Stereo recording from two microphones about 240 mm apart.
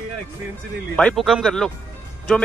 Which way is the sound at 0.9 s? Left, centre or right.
Centre.